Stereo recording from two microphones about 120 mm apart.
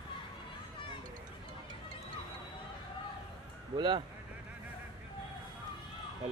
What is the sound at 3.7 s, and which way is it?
Speech, 40° right (ahead or behind).